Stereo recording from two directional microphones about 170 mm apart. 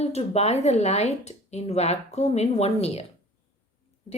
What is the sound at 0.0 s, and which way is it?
A woman's voice, 40° left (ahead or behind).